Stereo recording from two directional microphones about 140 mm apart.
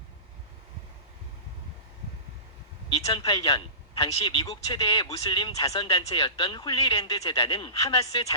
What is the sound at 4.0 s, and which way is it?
Speech, 25° left (ahead or behind).